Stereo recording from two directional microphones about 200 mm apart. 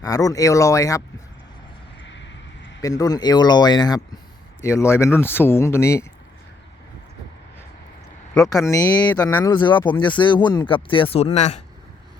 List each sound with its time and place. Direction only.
0.0 s speech: 15° left (ahead or behind)
2.0 s vehicle: 65° left (ahead or behind)
2.8 s speech: 20° left (ahead or behind)
8.4 s speech: 15° left (ahead or behind); by 11.6 s 35° left (ahead or behind)